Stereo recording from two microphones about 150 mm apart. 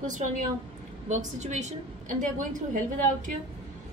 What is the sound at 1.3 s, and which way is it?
A woman's voice, 50° right (ahead or behind).